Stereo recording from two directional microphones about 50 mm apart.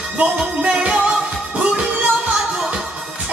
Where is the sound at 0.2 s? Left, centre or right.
Right.